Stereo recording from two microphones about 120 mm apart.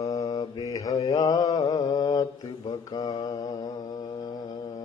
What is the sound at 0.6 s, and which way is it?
Mantra, 25° left (ahead or behind).